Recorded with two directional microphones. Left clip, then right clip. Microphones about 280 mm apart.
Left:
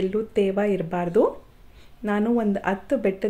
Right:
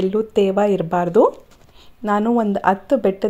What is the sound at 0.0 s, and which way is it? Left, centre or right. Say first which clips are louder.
Speech: right 5 dB; centre.